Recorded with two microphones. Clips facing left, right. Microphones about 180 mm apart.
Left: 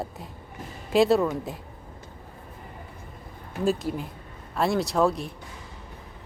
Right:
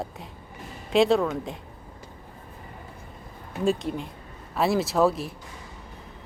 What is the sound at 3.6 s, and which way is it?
Speech, 5° left (ahead or behind).